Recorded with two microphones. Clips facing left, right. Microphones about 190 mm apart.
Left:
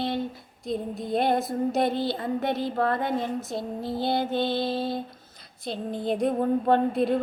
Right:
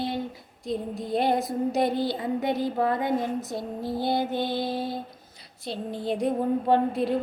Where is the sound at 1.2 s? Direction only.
15° right (ahead or behind).